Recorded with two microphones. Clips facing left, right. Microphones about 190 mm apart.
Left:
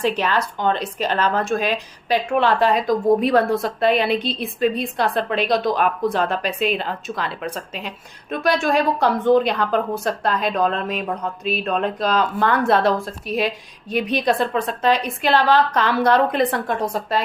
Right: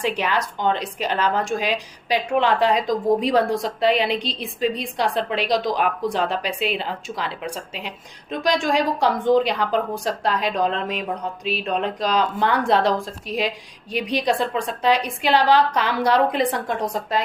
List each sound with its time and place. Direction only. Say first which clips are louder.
0.0 s speech: left 2 dB; 15° right (ahead or behind)